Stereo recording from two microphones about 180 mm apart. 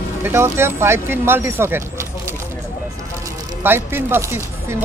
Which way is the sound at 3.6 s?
10° right (ahead or behind).